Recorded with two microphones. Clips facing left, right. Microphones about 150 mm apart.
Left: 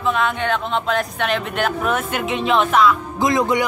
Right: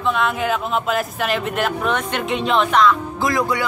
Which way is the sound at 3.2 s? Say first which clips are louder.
Left 4 dB; 20° left (ahead or behind).